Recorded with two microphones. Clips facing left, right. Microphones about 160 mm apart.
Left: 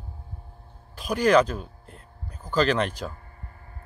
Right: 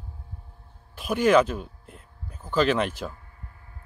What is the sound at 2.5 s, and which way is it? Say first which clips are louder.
Speech: even; 5° right (ahead or behind).